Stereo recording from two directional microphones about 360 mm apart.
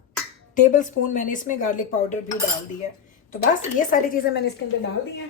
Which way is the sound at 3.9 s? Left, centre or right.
Left.